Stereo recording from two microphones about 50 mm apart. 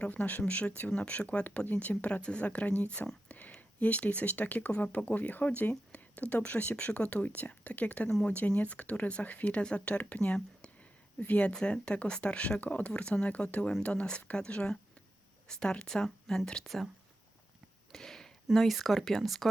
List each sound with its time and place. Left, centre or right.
0.0 s speech: left
1.5 s speech: left; by 16.0 s centre
16.0 s speech: centre
17.9 s a sound: centre
18.4 s speech: centre